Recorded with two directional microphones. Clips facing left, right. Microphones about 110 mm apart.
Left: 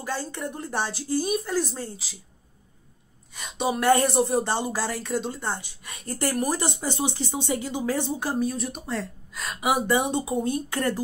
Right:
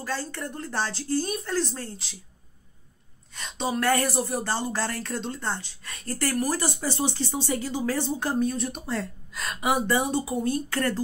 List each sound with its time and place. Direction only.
0.0 s speech: 15° left (ahead or behind)
3.3 s speech: 10° left (ahead or behind)